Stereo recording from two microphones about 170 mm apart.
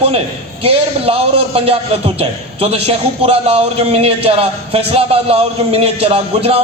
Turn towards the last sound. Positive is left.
turn(degrees=-35)  # may be behind; listen again after turning